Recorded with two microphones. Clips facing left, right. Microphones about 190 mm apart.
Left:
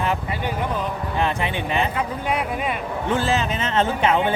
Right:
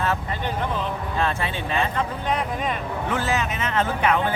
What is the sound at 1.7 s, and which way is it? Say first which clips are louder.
Speech: right 1 dB; 15° left (ahead or behind).